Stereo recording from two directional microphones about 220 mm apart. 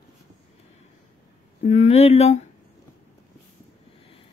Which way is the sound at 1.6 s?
30° left (ahead or behind).